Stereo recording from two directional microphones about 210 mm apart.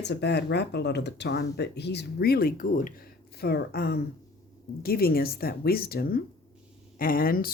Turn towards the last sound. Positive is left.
turn(degrees=45)  # may be behind; listen again after turning